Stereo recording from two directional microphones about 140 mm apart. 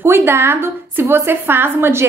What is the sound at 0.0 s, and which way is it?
A woman's voice, 15° right (ahead or behind).